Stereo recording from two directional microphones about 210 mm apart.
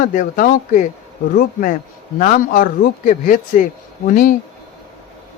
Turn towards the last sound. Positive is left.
turn(degrees=40)  # may be behind; listen again after turning